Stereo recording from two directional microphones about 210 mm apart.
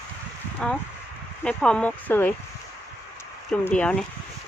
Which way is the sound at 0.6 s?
5° left (ahead or behind).